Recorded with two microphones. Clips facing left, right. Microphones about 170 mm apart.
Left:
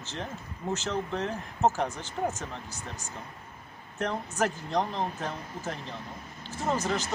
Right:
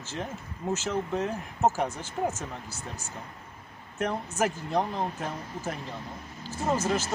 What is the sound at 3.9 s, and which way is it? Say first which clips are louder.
Speech: right 1 dB; 5° right (ahead or behind).